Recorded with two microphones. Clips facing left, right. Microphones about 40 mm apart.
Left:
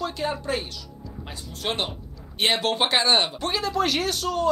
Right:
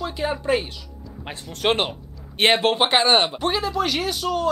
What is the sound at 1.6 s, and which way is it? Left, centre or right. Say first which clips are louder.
Speech: right 7 dB; right.